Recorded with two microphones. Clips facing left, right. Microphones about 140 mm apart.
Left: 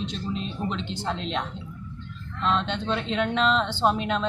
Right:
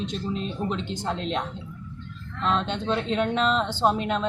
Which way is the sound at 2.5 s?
40° right (ahead or behind).